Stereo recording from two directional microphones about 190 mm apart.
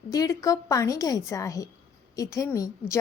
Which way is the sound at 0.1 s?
20° left (ahead or behind).